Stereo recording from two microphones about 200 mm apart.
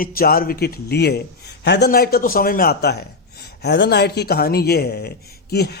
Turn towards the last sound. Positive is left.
turn(degrees=55)  # may be behind; listen again after turning